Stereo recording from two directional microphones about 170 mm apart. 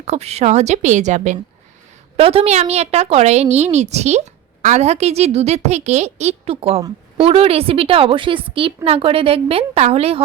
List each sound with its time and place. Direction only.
0.0 s a woman's voice: 40° right (ahead or behind)
2.1 s a woman's voice: 35° right (ahead or behind)